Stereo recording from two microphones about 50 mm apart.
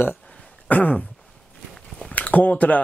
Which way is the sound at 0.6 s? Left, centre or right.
Left.